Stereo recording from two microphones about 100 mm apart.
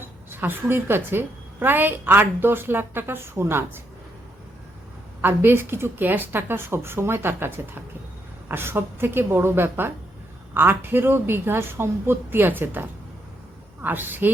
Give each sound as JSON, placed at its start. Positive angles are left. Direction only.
{"t": 0.0, "sound": "a woman's voice", "side_deg": -20}
{"t": 5.2, "sound": "a woman's voice", "side_deg": -20}